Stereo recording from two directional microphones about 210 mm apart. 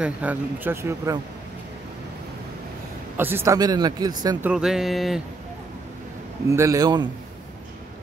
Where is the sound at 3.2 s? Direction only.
10° right (ahead or behind).